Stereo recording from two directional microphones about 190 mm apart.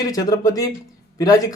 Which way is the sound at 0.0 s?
20° left (ahead or behind).